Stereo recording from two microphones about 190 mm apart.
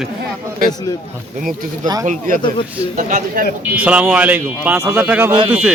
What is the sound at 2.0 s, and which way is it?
A man's voice, 40° right (ahead or behind).